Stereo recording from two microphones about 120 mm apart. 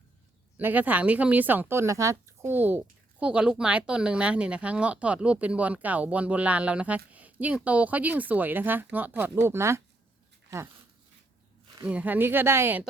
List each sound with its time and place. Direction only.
0.5 s speech: 15° right (ahead or behind)
11.9 s speech: 15° right (ahead or behind)